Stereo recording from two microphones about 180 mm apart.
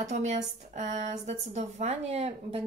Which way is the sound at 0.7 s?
40° right (ahead or behind).